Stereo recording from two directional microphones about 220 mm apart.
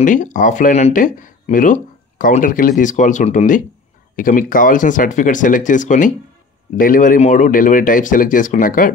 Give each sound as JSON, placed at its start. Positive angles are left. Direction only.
{"t": 0.0, "sound": "speech", "side_deg": 35}